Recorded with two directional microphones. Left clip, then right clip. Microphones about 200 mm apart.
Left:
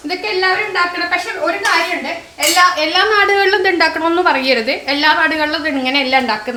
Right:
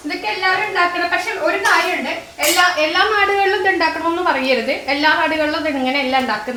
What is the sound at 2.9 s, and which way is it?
A woman's voice, 45° left (ahead or behind).